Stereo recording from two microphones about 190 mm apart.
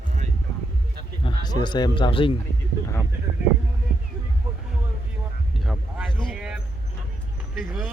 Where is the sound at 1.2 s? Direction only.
25° left (ahead or behind).